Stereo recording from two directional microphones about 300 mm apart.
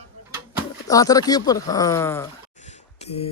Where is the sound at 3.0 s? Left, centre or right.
Left.